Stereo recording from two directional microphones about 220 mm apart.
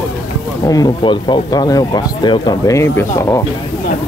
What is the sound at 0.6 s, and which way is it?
Speech, 15° left (ahead or behind).